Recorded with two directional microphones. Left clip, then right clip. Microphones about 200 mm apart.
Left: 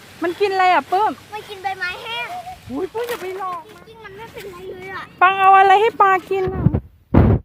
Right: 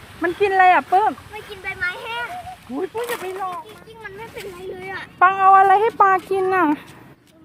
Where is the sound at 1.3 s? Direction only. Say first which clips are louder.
Left 4 dB; 45° left (ahead or behind).